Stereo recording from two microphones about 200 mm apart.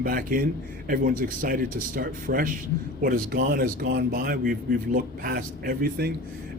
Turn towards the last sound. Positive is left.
turn(degrees=-50)  # may be behind; listen again after turning